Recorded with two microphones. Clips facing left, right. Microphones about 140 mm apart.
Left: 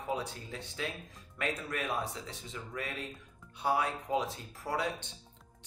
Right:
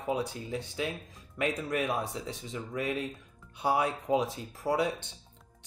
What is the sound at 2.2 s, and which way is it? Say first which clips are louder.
Speech: right 6 dB; 15° right (ahead or behind).